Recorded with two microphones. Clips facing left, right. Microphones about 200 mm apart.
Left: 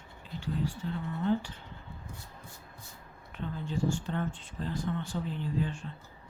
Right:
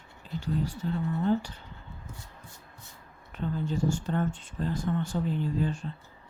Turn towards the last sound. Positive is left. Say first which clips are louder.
# right 3 dB
turn(degrees=-35)  # may be behind; listen again after turning